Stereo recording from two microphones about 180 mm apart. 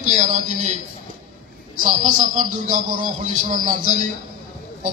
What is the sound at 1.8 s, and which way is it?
Speech, 45° right (ahead or behind).